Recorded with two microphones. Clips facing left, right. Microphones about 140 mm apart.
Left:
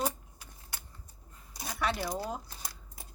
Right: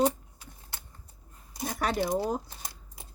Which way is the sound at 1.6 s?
45° right (ahead or behind).